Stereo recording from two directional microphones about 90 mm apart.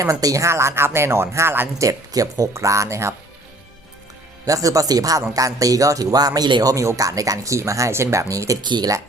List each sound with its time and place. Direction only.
0.0 s speech: 40° right (ahead or behind)
1.9 s speech: 40° right (ahead or behind)
4.4 s speech: 40° right (ahead or behind)
8.6 s speech: 55° right (ahead or behind)